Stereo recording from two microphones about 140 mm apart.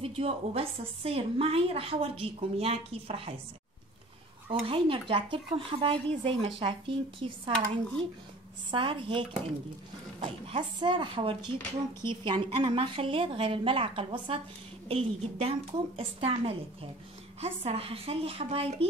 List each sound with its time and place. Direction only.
0.0 s a woman's voice: 45° right (ahead or behind)
4.5 s a woman's voice: 40° right (ahead or behind)
7.5 s speech: 5° left (ahead or behind)
8.6 s a woman's voice: 35° right (ahead or behind)